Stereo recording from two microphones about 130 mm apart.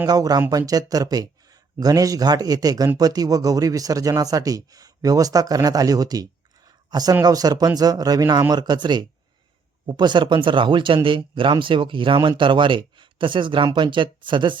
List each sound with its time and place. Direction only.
0.1 s speech: 30° right (ahead or behind)